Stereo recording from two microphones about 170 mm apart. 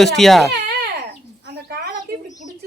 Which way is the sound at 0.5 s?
70° right (ahead or behind).